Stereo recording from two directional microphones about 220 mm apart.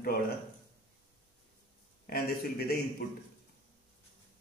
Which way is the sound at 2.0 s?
45° left (ahead or behind).